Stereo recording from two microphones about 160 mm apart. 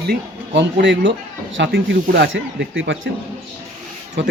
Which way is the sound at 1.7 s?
80° right.